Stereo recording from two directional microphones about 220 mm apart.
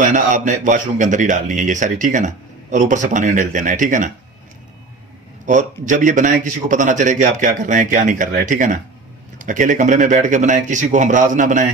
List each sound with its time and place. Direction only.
0.0 s a man's voice: 35° right (ahead or behind)
5.5 s a man's voice: 35° right (ahead or behind)